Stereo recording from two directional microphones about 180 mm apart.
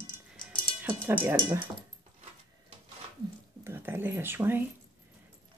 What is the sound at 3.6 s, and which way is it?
Speech, 15° right (ahead or behind).